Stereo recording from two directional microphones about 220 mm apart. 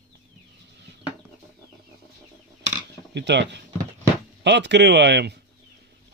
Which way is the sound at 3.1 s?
50° right (ahead or behind).